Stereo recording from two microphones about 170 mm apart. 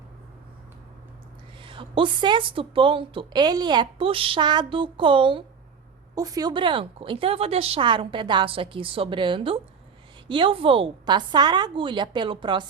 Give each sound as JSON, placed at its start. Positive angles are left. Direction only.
{"t": 1.6, "sound": "a woman's voice", "side_deg": -30}